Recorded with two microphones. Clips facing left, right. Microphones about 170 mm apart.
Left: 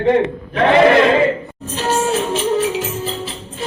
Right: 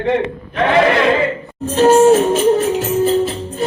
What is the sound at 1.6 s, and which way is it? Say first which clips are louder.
Music: right 10 dB; 50° right (ahead or behind).